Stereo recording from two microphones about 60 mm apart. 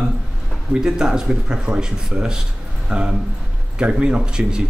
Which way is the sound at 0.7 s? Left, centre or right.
Centre.